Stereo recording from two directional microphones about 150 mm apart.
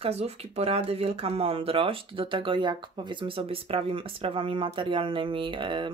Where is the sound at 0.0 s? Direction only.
45° right (ahead or behind).